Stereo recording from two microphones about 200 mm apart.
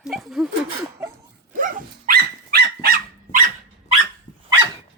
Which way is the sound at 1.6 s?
45° right (ahead or behind).